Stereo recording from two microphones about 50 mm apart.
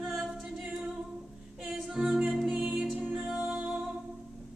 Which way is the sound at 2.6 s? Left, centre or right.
Centre.